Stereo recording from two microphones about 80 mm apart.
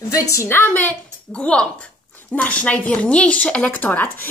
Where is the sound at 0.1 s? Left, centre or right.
Left.